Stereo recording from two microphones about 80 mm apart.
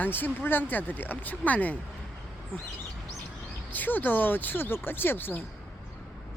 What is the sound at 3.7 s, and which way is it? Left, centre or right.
Speech, left.